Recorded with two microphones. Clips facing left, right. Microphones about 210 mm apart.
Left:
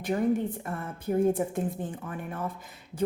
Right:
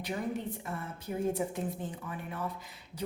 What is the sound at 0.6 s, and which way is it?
Speech, 55° left (ahead or behind).